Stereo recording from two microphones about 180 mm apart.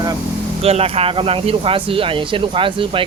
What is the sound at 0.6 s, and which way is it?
Speech, 35° right (ahead or behind).